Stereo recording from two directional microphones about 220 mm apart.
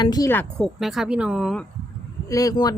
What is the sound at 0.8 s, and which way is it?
Speech, centre (ahead or behind).